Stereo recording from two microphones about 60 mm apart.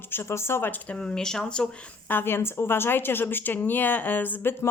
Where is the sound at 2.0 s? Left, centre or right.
Left.